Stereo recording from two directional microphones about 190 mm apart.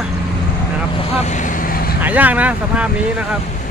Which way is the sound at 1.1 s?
35° left (ahead or behind).